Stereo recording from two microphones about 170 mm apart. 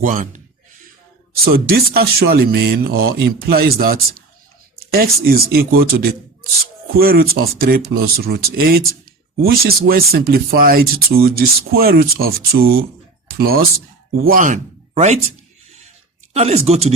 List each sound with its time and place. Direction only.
0.0 s speech: 50° right (ahead or behind)
1.5 s speech: 65° right (ahead or behind); by 15.2 s 40° right (ahead or behind)
16.3 s speech: 40° right (ahead or behind)